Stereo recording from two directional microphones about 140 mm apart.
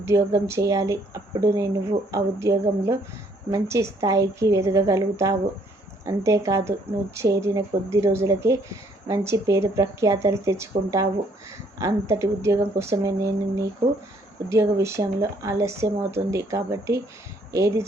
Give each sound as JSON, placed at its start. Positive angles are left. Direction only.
{"t": 0.0, "sound": "speech", "side_deg": -20}